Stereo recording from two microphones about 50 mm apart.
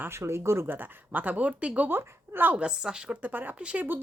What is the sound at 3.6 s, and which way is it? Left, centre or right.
Speech, right.